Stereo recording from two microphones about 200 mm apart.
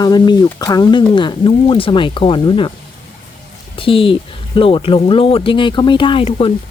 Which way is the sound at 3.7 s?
25° left (ahead or behind).